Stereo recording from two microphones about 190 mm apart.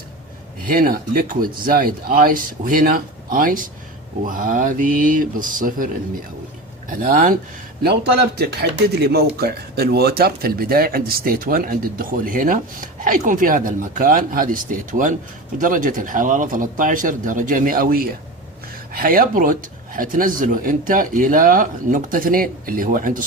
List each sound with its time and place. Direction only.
0.7 s speech: 50° right (ahead or behind)
7.8 s a man's voice: 60° right (ahead or behind)